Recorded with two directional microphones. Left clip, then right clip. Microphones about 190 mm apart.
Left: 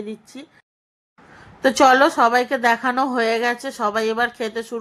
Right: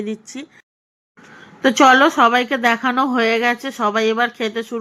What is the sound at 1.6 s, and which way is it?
A woman's voice, 10° right (ahead or behind).